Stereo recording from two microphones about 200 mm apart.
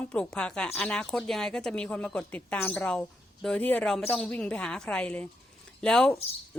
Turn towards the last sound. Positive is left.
turn(degrees=5)  # may be behind; listen again after turning